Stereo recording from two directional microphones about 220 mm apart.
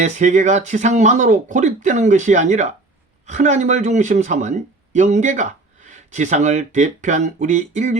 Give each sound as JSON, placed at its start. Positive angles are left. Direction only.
{"t": 0.0, "sound": "speech", "side_deg": -35}